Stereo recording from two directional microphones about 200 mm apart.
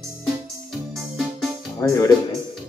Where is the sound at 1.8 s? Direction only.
15° left (ahead or behind).